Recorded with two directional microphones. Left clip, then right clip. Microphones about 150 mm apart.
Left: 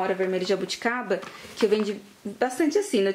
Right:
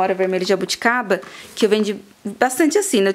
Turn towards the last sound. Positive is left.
turn(degrees=-35)  # may be behind; listen again after turning